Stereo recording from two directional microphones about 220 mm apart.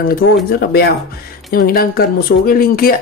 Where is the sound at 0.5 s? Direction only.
45° left (ahead or behind).